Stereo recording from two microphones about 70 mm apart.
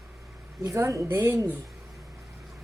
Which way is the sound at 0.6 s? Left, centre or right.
Right.